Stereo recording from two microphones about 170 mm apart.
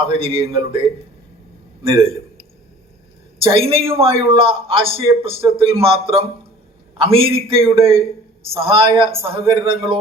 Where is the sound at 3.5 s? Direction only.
35° right (ahead or behind).